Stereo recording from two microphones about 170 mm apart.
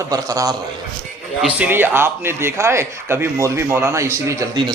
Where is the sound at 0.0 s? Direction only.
20° right (ahead or behind).